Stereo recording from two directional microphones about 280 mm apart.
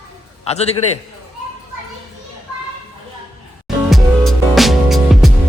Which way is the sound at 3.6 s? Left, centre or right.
Centre.